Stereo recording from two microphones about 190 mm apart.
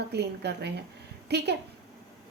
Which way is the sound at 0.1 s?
60° right (ahead or behind).